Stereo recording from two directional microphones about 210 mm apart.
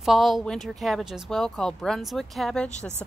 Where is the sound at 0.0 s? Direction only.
Centre (ahead or behind).